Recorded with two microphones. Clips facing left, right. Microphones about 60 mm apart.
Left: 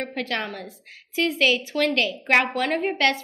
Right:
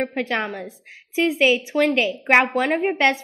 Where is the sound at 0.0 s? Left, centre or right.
Centre.